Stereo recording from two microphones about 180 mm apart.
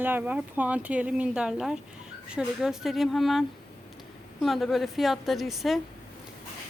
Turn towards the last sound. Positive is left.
turn(degrees=0)  # may be behind; listen again after turning